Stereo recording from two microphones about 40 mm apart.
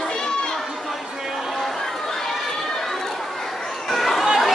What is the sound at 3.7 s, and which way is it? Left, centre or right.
Chatter, centre.